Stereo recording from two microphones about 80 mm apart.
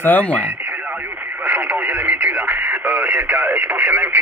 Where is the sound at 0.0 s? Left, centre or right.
Left.